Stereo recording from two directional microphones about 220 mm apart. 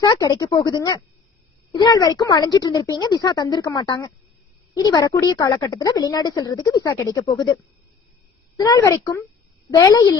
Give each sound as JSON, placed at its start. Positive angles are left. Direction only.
{"t": 0.0, "sound": "a woman's voice", "side_deg": 20}